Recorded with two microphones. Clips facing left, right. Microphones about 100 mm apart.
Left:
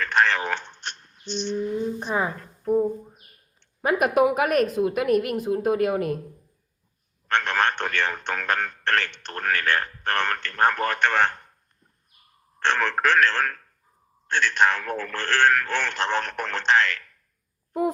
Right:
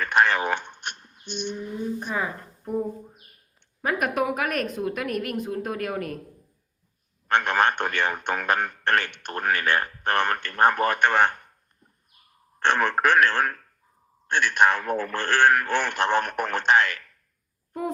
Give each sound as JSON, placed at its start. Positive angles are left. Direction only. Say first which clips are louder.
{"t": 0.0, "sound": "a sound", "louder": "right 1 dB", "side_deg": -10}
{"t": 1.5, "sound": "a man's voice", "louder": "left 6 dB", "side_deg": -10}
{"t": 2.0, "sound": "a woman's voice", "louder": "left 3 dB", "side_deg": 25}
{"t": 3.8, "sound": "a woman's voice", "louder": "left 5 dB", "side_deg": 20}
{"t": 7.3, "sound": "a man's voice", "louder": "right 2 dB", "side_deg": -10}
{"t": 12.5, "sound": "a man's voice", "louder": "right 1 dB", "side_deg": -15}